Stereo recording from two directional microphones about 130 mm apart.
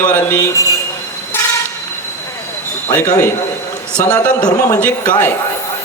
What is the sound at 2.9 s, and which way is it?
Speech, 15° left (ahead or behind).